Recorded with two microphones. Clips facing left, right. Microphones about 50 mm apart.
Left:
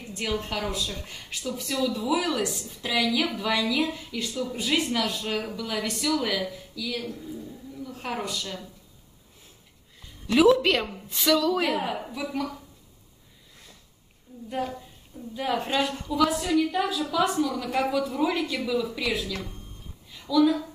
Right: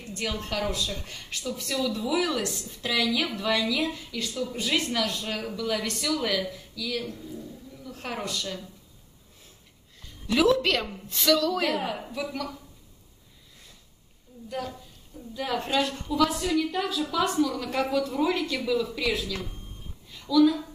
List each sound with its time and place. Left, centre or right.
0.0 s a woman's voice: centre
10.2 s a woman's voice: centre
14.5 s a woman's voice: left
15.3 s a woman's voice: centre
20.1 s a sound: centre